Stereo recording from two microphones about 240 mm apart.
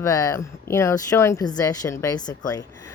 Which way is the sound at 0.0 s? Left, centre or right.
Centre.